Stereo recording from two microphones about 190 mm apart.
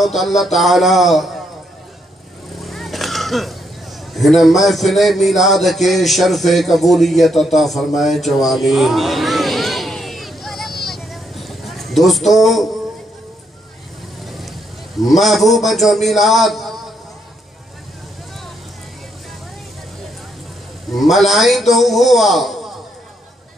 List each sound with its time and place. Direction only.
0.0 s a man's voice: centre (ahead or behind)
2.6 s a sound: centre (ahead or behind)
4.1 s a man's voice: centre (ahead or behind)
10.9 s a sound: centre (ahead or behind)
14.2 s vehicle: centre (ahead or behind)
15.0 s a man's voice: centre (ahead or behind)
20.9 s a man's voice: centre (ahead or behind)